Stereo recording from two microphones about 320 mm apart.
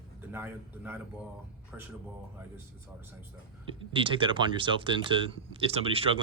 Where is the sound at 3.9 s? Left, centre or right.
Centre.